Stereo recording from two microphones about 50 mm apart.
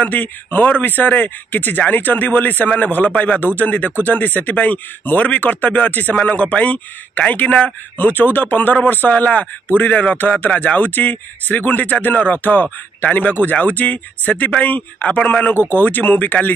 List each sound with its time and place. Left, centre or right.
0.0 s a man's voice: left